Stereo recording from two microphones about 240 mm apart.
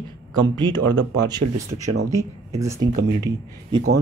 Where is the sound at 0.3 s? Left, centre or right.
Centre.